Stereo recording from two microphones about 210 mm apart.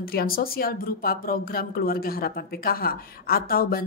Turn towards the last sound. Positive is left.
turn(degrees=45)  # may be behind; listen again after turning